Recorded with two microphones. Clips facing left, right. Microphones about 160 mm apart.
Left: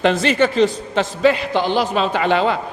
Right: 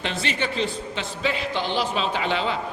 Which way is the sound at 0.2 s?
45° left (ahead or behind).